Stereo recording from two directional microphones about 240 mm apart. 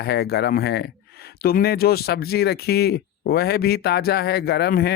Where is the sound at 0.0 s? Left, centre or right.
Left.